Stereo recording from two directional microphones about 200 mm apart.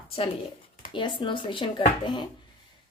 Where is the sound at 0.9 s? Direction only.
25° left (ahead or behind).